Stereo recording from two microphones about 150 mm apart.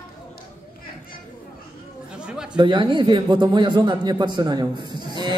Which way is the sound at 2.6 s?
30° right (ahead or behind).